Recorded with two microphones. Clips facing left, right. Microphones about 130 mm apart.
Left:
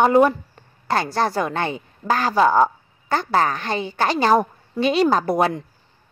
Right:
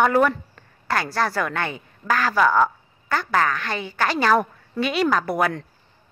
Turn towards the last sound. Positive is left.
turn(degrees=25)  # may be behind; listen again after turning